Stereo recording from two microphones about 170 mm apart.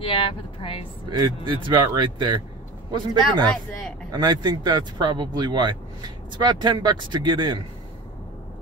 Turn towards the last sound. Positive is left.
turn(degrees=-25)  # may be behind; listen again after turning